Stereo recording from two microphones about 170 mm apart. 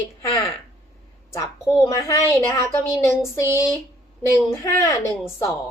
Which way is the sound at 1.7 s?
20° left (ahead or behind).